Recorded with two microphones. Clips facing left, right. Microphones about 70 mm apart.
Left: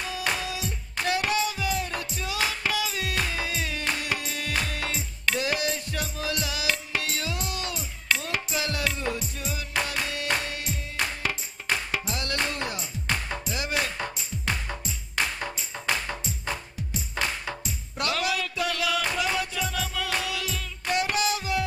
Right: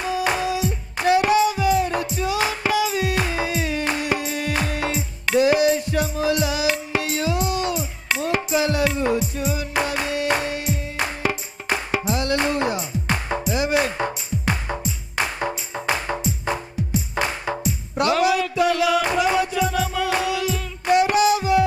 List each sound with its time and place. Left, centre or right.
0.0 s music: centre